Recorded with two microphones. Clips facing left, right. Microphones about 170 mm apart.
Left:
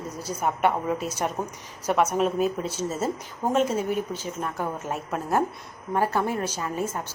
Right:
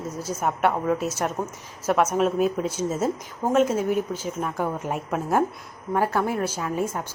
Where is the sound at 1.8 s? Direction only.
10° right (ahead or behind).